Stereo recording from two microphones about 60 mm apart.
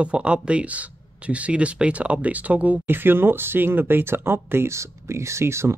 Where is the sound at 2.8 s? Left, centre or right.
Right.